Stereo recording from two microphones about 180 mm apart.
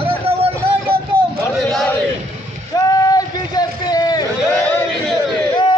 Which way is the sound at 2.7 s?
20° left (ahead or behind).